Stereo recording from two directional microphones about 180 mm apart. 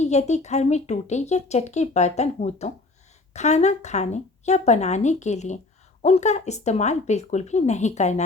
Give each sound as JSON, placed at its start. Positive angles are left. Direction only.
{"t": 0.0, "sound": "a woman's voice", "side_deg": 40}